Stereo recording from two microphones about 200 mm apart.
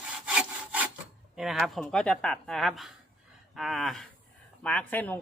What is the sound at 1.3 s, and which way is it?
Speech, centre (ahead or behind).